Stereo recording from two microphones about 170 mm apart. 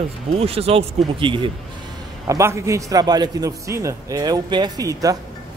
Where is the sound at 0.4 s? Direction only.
35° right (ahead or behind).